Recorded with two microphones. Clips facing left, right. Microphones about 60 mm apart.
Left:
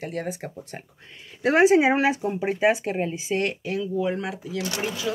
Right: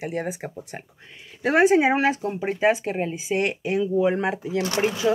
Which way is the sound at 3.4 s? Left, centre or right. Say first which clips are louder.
Right 6 dB; right.